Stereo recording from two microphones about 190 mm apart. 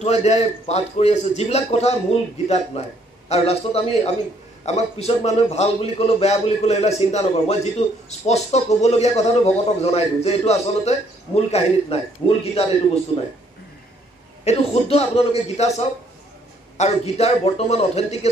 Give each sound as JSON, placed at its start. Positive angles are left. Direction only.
{"t": 0.0, "sound": "speech", "side_deg": 35}
{"t": 14.4, "sound": "speech", "side_deg": 35}